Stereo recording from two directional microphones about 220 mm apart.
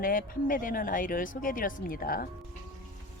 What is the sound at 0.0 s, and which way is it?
Speech, 40° left (ahead or behind).